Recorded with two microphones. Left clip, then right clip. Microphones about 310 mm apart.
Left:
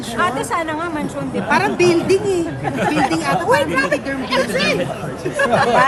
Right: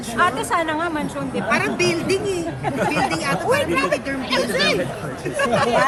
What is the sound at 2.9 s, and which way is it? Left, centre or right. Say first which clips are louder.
Speech: left 4 dB; centre.